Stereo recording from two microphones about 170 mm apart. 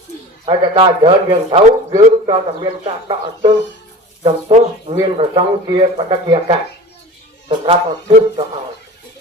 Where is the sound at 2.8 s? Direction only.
30° right (ahead or behind).